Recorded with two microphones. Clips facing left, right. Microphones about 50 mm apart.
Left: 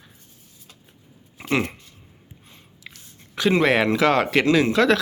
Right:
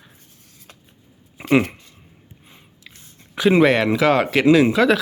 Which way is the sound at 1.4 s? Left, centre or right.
Centre.